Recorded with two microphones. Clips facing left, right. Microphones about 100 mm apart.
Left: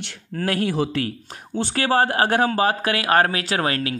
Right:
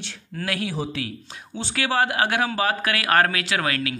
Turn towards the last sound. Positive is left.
turn(degrees=35)  # may be behind; listen again after turning